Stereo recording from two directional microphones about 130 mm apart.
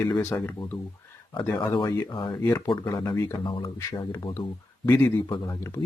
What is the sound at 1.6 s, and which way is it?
Speech, 35° left (ahead or behind).